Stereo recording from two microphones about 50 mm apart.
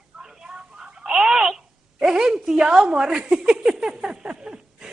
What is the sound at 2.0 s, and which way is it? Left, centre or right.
Speech, centre.